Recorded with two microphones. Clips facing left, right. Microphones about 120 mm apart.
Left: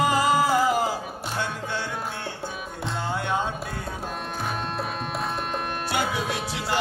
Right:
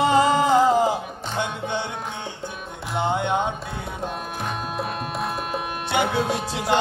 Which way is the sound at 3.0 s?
20° right (ahead or behind).